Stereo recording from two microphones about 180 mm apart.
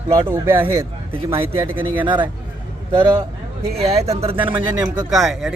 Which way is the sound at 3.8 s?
35° right (ahead or behind).